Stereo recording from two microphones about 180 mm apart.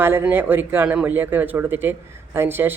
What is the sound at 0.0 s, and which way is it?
A man's voice, 10° right (ahead or behind).